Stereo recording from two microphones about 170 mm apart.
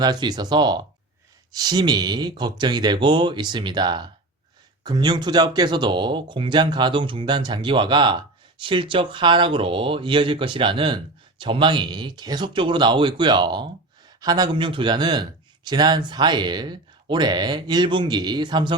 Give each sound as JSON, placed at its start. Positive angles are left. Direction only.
{"t": 0.0, "sound": "speech", "side_deg": -25}